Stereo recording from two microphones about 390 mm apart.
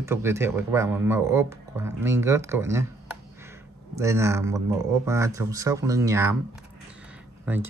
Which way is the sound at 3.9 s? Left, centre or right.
Centre.